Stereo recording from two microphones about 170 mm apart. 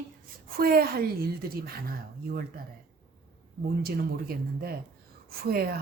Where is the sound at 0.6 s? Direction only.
60° right (ahead or behind).